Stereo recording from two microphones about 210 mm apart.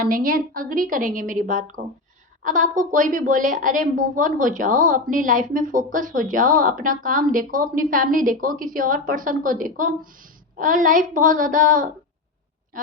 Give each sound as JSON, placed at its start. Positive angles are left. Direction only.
{"t": 0.0, "sound": "a woman's voice", "side_deg": -40}